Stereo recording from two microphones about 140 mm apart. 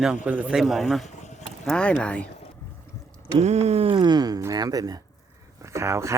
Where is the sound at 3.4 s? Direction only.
50° right (ahead or behind).